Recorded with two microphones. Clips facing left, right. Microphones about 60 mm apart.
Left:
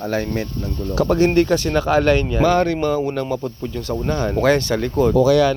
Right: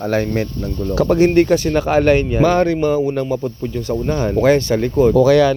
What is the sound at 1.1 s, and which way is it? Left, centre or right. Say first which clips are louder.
Speech: right 3 dB; right.